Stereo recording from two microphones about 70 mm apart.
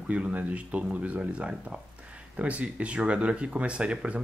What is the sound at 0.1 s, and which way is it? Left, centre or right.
Speech, right.